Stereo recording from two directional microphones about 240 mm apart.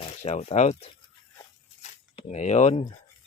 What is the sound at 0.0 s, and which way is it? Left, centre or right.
Speech, left.